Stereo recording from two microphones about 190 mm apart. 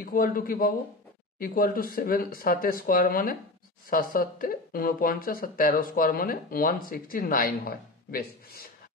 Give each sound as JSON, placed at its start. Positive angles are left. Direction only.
{"t": 0.0, "sound": "speech", "side_deg": 50}